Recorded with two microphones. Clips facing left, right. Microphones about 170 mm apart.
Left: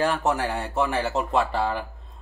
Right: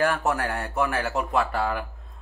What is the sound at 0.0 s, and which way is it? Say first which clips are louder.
Speech: left 1 dB; 20° left (ahead or behind).